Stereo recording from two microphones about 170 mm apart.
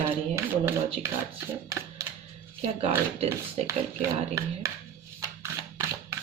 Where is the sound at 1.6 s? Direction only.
20° right (ahead or behind).